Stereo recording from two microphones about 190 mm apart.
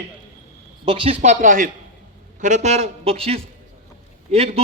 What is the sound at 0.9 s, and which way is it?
A man's voice, 30° right (ahead or behind).